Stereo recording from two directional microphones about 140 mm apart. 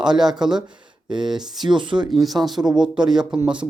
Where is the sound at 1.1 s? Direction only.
35° right (ahead or behind).